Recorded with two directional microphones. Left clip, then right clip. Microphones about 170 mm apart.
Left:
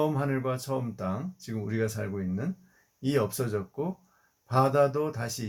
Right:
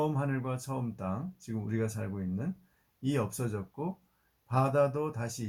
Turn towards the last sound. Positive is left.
turn(degrees=15)  # may be behind; listen again after turning